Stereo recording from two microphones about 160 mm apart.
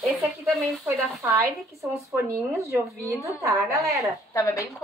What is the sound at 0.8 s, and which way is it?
A woman's voice, 20° right (ahead or behind).